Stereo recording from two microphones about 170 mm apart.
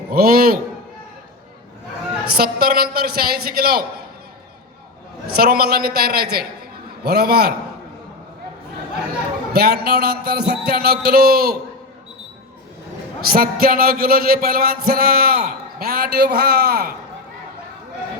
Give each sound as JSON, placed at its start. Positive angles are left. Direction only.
{"t": 0.1, "sound": "music", "side_deg": -60}
{"t": 2.3, "sound": "music", "side_deg": -65}
{"t": 5.4, "sound": "music", "side_deg": -65}
{"t": 7.0, "sound": "a man's voice", "side_deg": -70}
{"t": 9.5, "sound": "a man's voice", "side_deg": -65}
{"t": 11.0, "sound": "music", "side_deg": -65}
{"t": 13.3, "sound": "music", "side_deg": -60}